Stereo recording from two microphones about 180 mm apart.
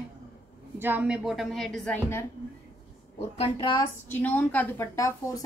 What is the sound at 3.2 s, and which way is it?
Speech, 30° left (ahead or behind).